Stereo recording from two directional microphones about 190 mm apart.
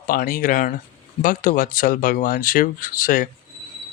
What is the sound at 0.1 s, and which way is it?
Speech, 45° left (ahead or behind).